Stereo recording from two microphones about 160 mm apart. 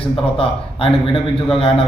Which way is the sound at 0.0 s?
35° left (ahead or behind).